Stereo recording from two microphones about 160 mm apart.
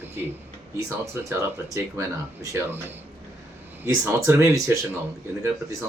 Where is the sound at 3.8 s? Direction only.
15° right (ahead or behind).